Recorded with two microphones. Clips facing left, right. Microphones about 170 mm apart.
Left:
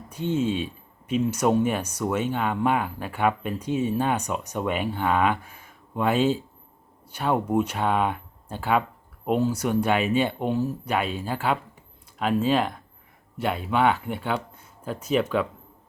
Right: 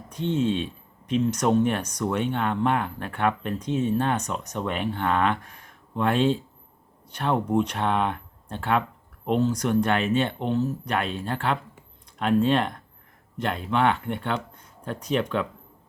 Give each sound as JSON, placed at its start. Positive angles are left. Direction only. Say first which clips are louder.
{"t": 0.1, "sound": "speech", "louder": "even", "side_deg": 10}